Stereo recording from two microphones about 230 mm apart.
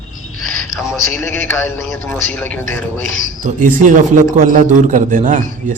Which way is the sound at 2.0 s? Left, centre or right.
Centre.